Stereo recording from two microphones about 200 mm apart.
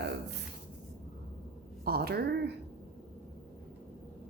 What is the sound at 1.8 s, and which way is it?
Speech, 50° right (ahead or behind).